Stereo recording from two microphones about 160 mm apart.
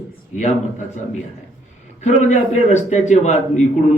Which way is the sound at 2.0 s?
45° left (ahead or behind).